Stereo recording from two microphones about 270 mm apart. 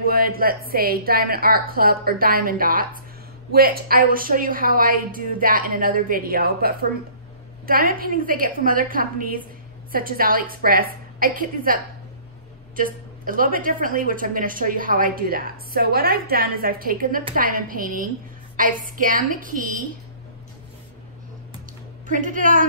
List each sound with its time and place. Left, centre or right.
0.0 s a woman's voice: right
22.0 s a woman's voice: right